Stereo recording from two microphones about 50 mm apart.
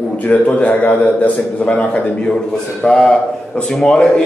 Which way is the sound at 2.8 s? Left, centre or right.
Centre.